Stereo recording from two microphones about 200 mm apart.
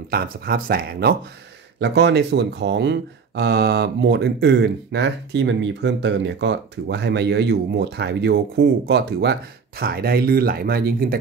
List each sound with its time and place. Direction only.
0.1 s speech: 50° right (ahead or behind)